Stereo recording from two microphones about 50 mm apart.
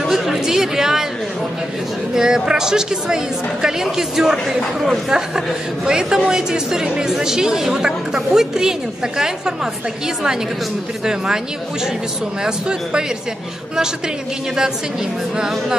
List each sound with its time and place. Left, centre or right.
0.0 s a woman's voice: centre
2.1 s a woman's voice: centre
5.9 s a woman's voice: centre
12.4 s a woman's voice: centre